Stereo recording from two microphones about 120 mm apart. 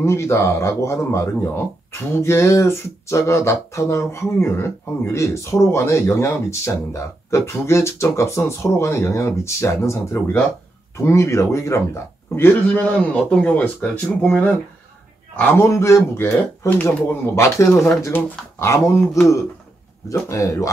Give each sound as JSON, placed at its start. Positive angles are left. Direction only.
{"t": 0.0, "sound": "speech", "side_deg": 25}
{"t": 12.6, "sound": "speech", "side_deg": 10}
{"t": 15.3, "sound": "speech", "side_deg": 20}
{"t": 20.1, "sound": "speech", "side_deg": 25}